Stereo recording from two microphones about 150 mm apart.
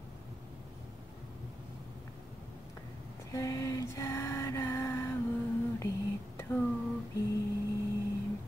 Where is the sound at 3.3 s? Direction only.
20° left (ahead or behind).